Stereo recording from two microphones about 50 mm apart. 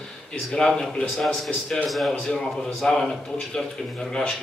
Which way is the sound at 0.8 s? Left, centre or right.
Centre.